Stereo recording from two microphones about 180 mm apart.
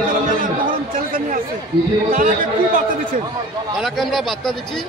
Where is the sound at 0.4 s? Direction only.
50° right (ahead or behind).